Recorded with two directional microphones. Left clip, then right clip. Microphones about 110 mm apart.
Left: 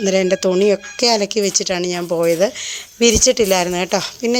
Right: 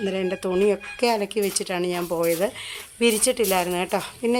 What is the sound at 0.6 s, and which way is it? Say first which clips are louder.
Speech: left 6 dB; 35° left (ahead or behind).